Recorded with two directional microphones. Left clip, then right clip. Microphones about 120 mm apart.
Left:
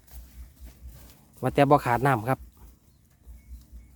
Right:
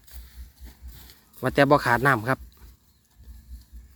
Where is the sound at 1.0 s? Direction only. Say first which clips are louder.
Right 2 dB; 20° left (ahead or behind).